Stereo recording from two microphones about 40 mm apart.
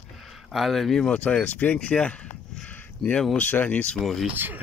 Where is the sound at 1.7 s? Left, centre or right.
Left.